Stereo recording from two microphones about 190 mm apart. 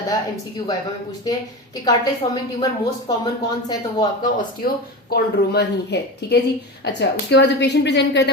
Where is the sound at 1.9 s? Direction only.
20° left (ahead or behind).